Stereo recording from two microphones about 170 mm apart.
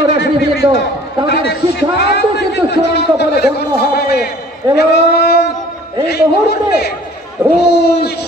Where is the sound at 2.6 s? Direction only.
75° left (ahead or behind).